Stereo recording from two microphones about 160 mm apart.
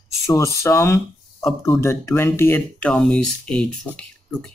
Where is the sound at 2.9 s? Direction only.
Centre (ahead or behind).